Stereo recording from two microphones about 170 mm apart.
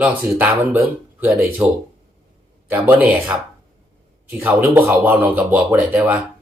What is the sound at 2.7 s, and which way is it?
Speech, 10° right (ahead or behind).